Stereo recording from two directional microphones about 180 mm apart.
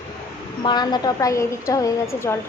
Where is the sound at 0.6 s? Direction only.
25° left (ahead or behind).